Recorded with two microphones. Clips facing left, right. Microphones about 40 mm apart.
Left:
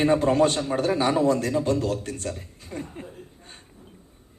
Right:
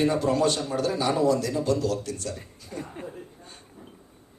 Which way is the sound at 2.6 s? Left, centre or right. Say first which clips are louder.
Left 3 dB; left.